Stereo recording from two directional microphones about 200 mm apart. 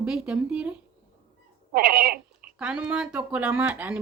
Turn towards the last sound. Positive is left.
turn(degrees=-5)  # may be behind; listen again after turning